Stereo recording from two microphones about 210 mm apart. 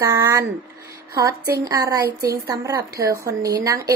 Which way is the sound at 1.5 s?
15° right (ahead or behind).